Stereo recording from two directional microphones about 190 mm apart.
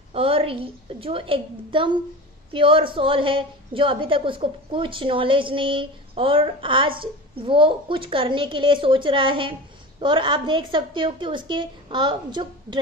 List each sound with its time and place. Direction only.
0.1 s a woman's voice: 30° right (ahead or behind)